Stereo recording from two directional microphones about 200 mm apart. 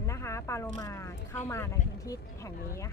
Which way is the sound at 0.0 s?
15° left (ahead or behind).